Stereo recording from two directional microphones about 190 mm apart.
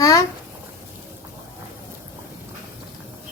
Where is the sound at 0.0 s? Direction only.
15° left (ahead or behind).